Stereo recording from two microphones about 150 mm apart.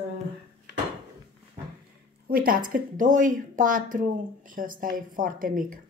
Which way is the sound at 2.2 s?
70° right (ahead or behind).